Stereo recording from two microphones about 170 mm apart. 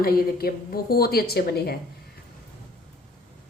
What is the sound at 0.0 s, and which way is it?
A woman's voice, 65° left (ahead or behind).